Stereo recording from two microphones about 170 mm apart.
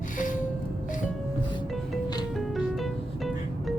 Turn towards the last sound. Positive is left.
turn(degrees=0)  # may be behind; listen again after turning